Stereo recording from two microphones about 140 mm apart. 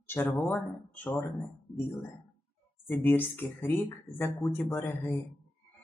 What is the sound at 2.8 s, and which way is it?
Speech, 15° left (ahead or behind).